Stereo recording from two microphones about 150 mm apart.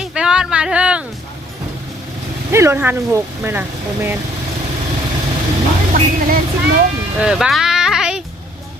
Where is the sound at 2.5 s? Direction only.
15° right (ahead or behind).